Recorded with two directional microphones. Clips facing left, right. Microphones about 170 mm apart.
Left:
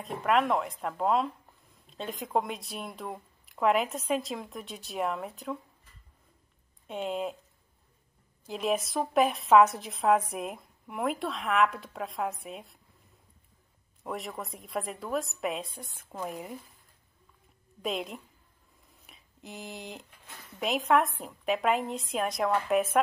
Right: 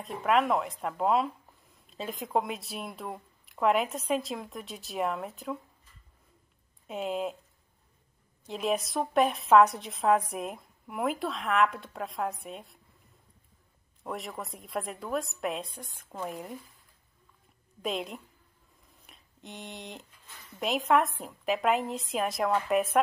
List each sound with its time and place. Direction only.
0.0 s a woman's voice: centre (ahead or behind)
6.9 s a woman's voice: centre (ahead or behind)
8.5 s a woman's voice: centre (ahead or behind)
14.0 s a woman's voice: centre (ahead or behind)
17.8 s a woman's voice: centre (ahead or behind)
19.0 s a sound: centre (ahead or behind)
20.5 s a woman's voice: centre (ahead or behind)